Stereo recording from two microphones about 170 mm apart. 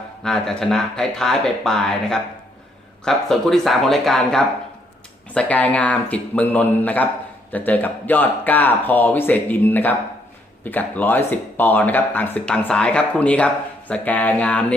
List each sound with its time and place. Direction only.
0.2 s speech: 5° left (ahead or behind)